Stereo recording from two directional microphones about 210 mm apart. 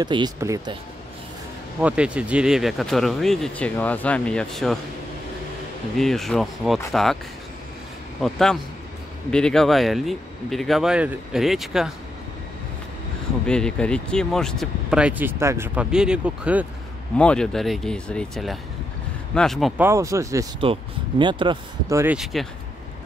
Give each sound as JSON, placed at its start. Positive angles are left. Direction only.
{"t": 0.0, "sound": "speech", "side_deg": -20}
{"t": 1.8, "sound": "speech", "side_deg": -5}
{"t": 5.9, "sound": "speech", "side_deg": 0}
{"t": 8.2, "sound": "speech", "side_deg": 0}
{"t": 13.5, "sound": "speech", "side_deg": 5}
{"t": 19.8, "sound": "speech", "side_deg": -15}